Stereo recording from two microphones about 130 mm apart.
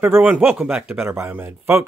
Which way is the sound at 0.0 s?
15° right (ahead or behind).